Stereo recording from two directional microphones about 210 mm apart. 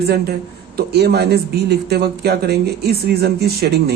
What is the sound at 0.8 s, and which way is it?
Speech, 50° right (ahead or behind).